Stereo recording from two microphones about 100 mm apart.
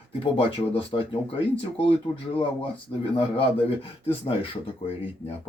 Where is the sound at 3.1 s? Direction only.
65° left (ahead or behind).